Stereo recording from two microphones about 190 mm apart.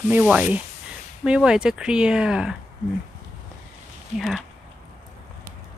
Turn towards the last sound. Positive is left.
turn(degrees=0)  # may be behind; listen again after turning